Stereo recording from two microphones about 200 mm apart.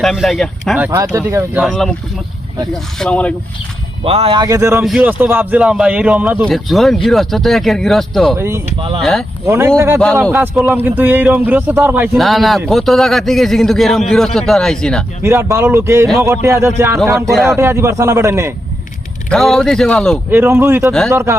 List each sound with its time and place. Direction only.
0.0 s a man's voice: centre (ahead or behind)
0.9 s a man's voice: 15° right (ahead or behind)
1.6 s a man's voice: centre (ahead or behind)
4.0 s a man's voice: 30° right (ahead or behind); by 8.4 s centre (ahead or behind)
8.4 s a man's voice: 15° right (ahead or behind)
9.0 s a man's voice: centre (ahead or behind)
9.5 s a man's voice: 15° right (ahead or behind); by 15.0 s 5° left (ahead or behind)
15.2 s a man's voice: 15° right (ahead or behind)
19.3 s a man's voice: centre (ahead or behind)
20.3 s a man's voice: 10° right (ahead or behind)